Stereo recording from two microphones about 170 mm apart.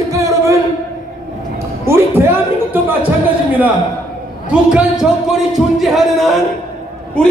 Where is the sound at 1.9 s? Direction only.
15° right (ahead or behind).